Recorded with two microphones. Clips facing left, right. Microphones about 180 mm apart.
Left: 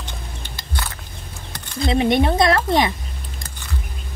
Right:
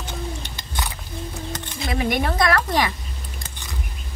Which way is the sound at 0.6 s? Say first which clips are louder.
Even; 15° right (ahead or behind).